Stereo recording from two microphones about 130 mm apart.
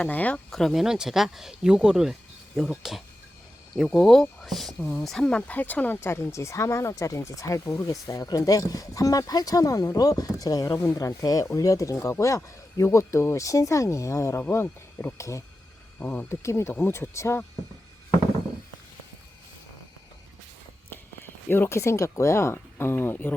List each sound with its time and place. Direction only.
0.0 s speech: 10° left (ahead or behind)
20.9 s speech: 15° left (ahead or behind)